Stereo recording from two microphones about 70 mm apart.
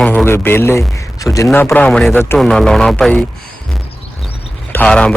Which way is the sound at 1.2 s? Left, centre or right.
Left.